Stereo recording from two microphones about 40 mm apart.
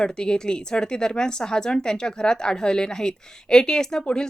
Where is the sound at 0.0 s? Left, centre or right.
Left.